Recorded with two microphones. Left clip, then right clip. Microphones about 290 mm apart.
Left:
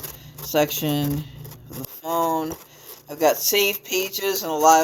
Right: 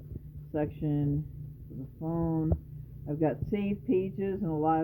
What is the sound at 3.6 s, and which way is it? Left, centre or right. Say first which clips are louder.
Music: left 9 dB; centre.